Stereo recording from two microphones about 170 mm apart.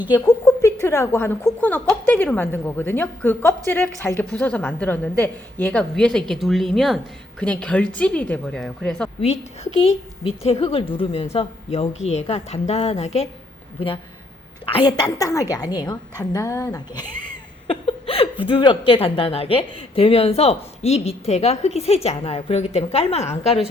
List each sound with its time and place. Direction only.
0.1 s a woman's voice: 20° left (ahead or behind); by 9.0 s 5° left (ahead or behind)
9.8 s a woman's voice: 35° left (ahead or behind)
14.7 s a woman's voice: 25° left (ahead or behind)